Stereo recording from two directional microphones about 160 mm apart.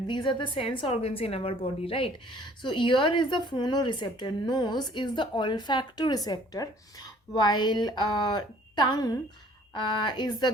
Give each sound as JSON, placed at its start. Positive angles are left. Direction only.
{"t": 0.1, "sound": "a woman's voice", "side_deg": 30}